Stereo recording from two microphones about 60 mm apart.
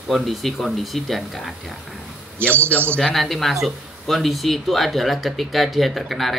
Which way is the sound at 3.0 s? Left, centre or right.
Centre.